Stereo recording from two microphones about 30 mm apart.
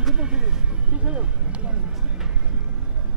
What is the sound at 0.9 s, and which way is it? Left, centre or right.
Speech, right.